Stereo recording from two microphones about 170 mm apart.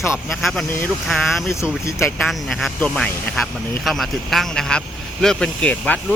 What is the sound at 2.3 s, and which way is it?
Speech, centre (ahead or behind).